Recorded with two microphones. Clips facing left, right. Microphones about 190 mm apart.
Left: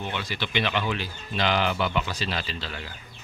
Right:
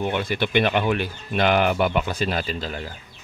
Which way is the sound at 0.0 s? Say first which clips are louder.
Right 8 dB; 55° right (ahead or behind).